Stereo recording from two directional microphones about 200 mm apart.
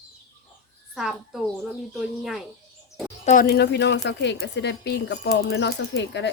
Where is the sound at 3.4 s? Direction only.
55° left (ahead or behind).